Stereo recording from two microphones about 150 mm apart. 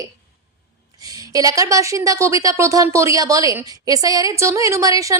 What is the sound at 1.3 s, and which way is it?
Speech, 25° right (ahead or behind).